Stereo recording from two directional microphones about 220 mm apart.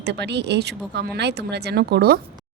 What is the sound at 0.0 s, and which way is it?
A woman's voice, 50° right (ahead or behind).